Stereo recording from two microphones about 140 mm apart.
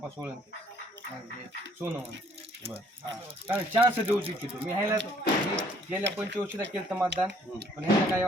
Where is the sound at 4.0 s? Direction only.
40° right (ahead or behind).